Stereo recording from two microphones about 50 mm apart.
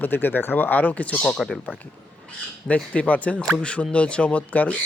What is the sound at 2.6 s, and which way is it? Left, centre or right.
Speech, left.